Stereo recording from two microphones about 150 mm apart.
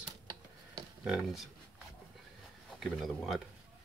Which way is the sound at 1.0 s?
5° right (ahead or behind).